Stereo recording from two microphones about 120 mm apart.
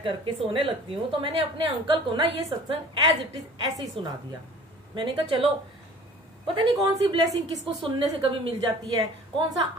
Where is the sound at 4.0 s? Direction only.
50° right (ahead or behind).